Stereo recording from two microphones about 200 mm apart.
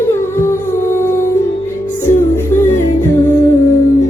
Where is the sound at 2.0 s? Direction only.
10° left (ahead or behind).